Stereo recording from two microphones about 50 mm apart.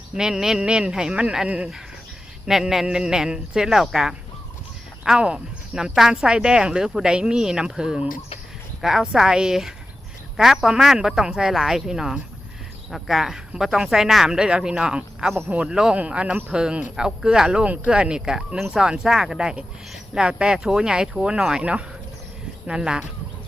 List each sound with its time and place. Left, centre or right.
0.1 s speech: centre
2.5 s speech: centre
21.6 s speech: right